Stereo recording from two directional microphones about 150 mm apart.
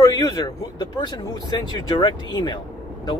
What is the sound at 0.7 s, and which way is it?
Speech, 30° left (ahead or behind).